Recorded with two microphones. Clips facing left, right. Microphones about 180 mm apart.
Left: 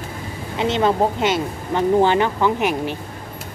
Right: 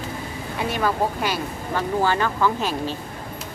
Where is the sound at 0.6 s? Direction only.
25° left (ahead or behind).